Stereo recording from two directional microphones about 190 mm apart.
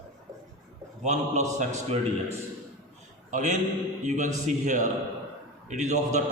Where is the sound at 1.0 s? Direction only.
40° right (ahead or behind).